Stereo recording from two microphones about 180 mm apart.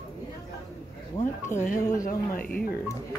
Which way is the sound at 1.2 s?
40° left (ahead or behind).